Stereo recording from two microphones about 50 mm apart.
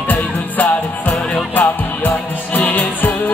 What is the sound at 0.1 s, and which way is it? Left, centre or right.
Music, left.